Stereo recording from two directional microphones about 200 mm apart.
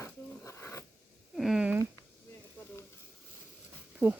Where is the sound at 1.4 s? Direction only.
Centre (ahead or behind).